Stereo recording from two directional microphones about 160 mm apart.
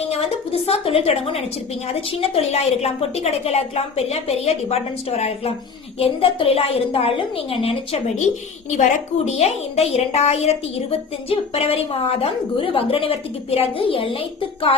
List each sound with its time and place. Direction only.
0.1 s a woman's voice: 40° left (ahead or behind)